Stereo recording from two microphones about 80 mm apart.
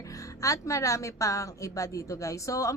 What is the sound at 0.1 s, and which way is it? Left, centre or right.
A woman's voice, left.